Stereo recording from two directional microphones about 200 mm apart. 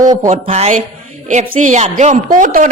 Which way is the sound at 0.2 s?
35° right (ahead or behind).